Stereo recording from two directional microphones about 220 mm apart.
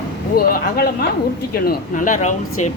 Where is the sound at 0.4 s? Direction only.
40° left (ahead or behind).